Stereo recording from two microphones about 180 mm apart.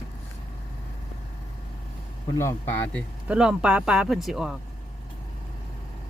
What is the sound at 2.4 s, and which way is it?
Speech, 15° left (ahead or behind).